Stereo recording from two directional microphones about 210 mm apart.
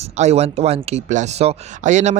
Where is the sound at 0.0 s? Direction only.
30° right (ahead or behind).